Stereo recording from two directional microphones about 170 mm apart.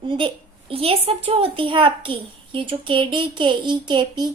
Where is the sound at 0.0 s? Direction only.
30° right (ahead or behind).